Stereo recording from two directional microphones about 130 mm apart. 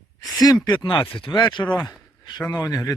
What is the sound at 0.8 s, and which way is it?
Speech, 40° left (ahead or behind).